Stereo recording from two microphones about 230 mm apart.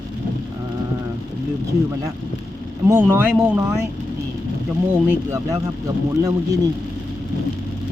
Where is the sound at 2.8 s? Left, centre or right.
Centre.